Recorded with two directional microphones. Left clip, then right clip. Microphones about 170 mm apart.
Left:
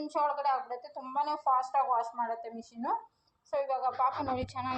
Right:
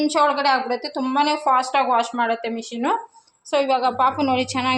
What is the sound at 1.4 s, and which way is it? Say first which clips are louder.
Speech: right 10 dB; 30° right (ahead or behind).